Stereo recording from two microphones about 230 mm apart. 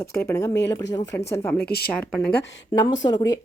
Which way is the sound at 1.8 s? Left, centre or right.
Centre.